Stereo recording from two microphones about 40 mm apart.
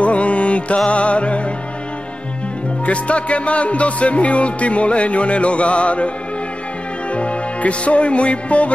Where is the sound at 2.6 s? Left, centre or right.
Left.